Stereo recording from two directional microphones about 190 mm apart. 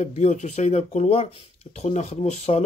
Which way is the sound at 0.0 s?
35° left (ahead or behind).